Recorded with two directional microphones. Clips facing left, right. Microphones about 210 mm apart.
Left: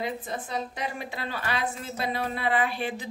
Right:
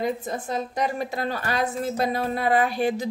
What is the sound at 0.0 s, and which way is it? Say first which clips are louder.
Speech: right 5 dB; 45° right (ahead or behind).